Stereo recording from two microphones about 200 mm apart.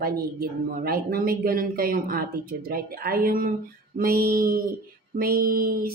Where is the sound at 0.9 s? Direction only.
45° right (ahead or behind).